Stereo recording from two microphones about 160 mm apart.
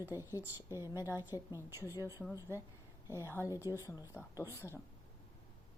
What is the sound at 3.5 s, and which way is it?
Speech, 15° right (ahead or behind).